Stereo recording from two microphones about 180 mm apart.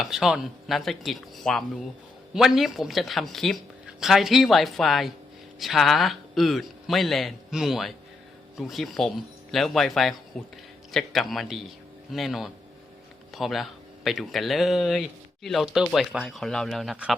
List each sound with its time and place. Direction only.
0.0 s a man's voice: centre (ahead or behind)